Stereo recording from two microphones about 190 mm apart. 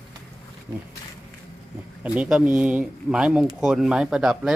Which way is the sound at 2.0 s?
5° right (ahead or behind).